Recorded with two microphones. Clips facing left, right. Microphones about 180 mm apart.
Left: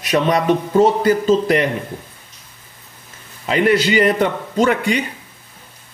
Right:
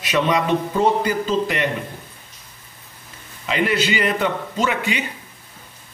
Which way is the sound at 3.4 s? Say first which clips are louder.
Left 5 dB; 45° left (ahead or behind).